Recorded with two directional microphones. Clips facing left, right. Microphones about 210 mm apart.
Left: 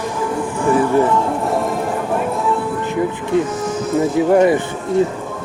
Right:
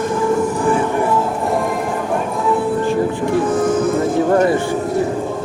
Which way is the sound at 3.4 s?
55° right (ahead or behind).